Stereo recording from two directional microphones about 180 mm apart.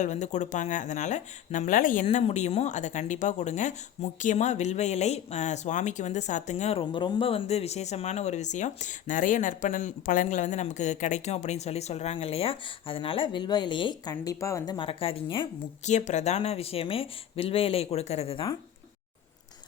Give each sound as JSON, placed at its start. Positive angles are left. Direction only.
{"t": 0.0, "sound": "speech", "side_deg": 40}